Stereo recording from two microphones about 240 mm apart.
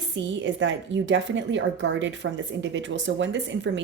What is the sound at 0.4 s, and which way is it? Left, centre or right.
Speech, right.